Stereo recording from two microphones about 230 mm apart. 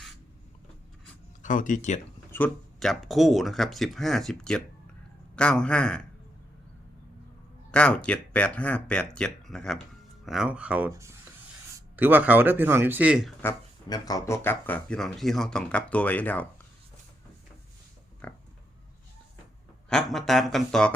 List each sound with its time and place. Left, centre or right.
1.4 s speech: left
2.3 s speech: centre
7.7 s a man's voice: centre
13.4 s speech: centre
18.2 s pig: centre
19.9 s speech: centre